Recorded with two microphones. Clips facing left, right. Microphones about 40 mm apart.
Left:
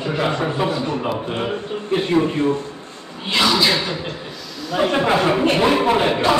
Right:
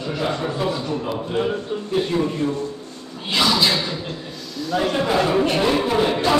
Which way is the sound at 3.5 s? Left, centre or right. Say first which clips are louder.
Left 2 dB; centre.